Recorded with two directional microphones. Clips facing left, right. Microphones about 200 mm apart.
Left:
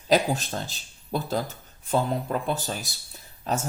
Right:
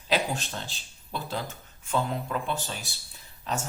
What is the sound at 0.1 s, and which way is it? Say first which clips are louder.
Speech: left 6 dB; 40° left (ahead or behind).